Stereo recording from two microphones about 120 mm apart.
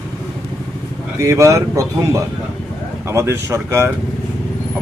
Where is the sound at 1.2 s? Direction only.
25° right (ahead or behind).